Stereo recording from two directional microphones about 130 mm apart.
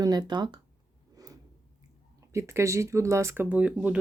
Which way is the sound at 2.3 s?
20° right (ahead or behind).